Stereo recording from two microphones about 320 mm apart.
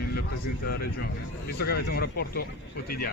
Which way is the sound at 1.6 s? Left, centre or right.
Left.